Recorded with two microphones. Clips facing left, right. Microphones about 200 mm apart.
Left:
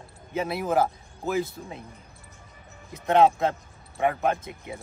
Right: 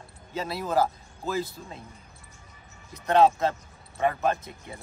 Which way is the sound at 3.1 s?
20° left (ahead or behind).